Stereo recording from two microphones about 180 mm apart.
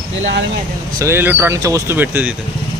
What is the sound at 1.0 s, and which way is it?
Speech, 15° right (ahead or behind).